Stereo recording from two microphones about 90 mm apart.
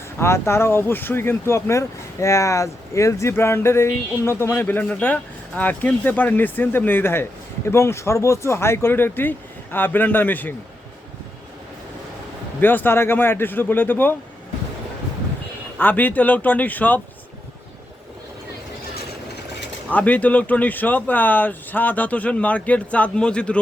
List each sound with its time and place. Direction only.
0.2 s speech: 30° left (ahead or behind)
12.5 s speech: 20° left (ahead or behind)
15.8 s speech: 20° left (ahead or behind)
19.9 s speech: 15° left (ahead or behind)